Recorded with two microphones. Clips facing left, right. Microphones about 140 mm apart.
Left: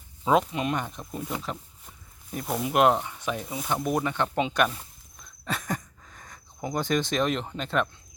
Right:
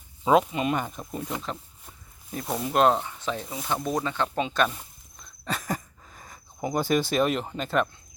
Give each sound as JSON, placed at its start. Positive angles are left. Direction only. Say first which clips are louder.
{"t": 0.3, "sound": "speech", "louder": "right 2 dB", "side_deg": 0}
{"t": 2.6, "sound": "speech", "louder": "even", "side_deg": 15}
{"t": 4.7, "sound": "a sound", "louder": "even", "side_deg": -5}